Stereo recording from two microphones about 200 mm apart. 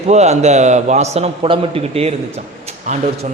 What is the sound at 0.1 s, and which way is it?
A man's voice, 35° right (ahead or behind).